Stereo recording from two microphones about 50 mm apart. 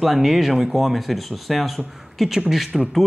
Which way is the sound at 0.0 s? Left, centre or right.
Centre.